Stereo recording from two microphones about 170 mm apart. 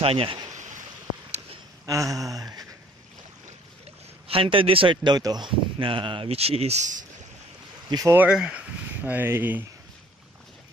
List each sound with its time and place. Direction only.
0.0 s a man's voice: 35° right (ahead or behind)
1.9 s a sound: 20° right (ahead or behind)
4.3 s a man's voice: 30° right (ahead or behind)
7.9 s speech: 15° right (ahead or behind)